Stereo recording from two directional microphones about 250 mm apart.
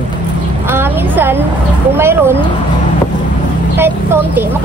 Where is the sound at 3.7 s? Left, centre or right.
Centre.